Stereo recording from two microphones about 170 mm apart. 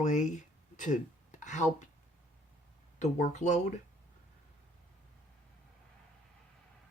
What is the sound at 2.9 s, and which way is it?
Speech, 45° left (ahead or behind).